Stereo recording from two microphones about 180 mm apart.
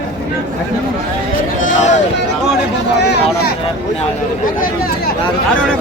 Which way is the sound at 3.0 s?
65° left (ahead or behind).